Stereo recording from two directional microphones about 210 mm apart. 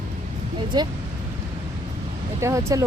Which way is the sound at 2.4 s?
15° right (ahead or behind).